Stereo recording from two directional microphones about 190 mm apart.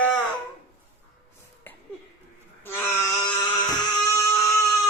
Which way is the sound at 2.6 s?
10° left (ahead or behind).